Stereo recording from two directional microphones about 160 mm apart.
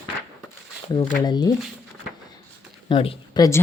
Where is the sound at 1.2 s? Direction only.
25° left (ahead or behind).